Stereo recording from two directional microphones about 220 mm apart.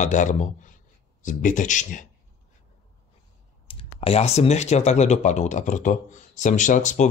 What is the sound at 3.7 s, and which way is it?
Speech, 25° left (ahead or behind).